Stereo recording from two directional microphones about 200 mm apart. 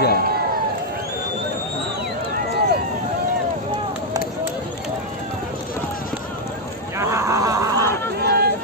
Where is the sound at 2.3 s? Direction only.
50° right (ahead or behind).